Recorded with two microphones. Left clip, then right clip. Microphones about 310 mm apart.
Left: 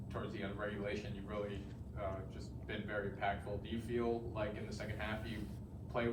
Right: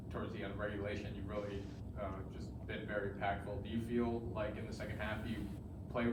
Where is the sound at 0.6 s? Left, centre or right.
Left.